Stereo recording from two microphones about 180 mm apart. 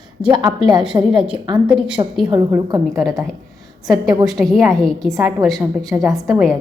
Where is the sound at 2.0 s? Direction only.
20° right (ahead or behind).